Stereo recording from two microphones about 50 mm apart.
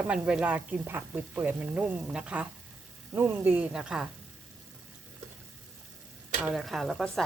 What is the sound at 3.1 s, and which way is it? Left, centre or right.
Speech, right.